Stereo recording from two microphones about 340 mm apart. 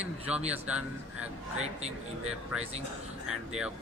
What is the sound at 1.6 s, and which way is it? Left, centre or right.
Speech, centre.